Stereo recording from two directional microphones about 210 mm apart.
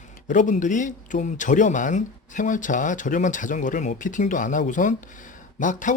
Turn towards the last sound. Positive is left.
turn(degrees=35)  # may be behind; listen again after turning